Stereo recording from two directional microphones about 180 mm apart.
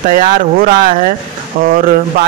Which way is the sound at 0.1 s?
50° right (ahead or behind).